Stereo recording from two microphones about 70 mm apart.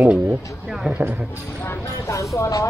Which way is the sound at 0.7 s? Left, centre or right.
Centre.